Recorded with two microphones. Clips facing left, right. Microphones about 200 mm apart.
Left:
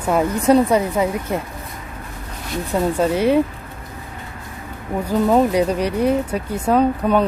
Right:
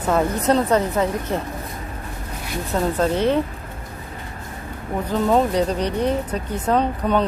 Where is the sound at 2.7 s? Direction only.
10° left (ahead or behind).